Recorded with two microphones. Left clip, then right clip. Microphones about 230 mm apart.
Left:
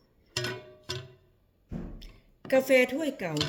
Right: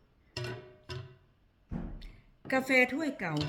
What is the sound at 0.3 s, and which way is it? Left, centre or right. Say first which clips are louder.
Music: left 7 dB; left.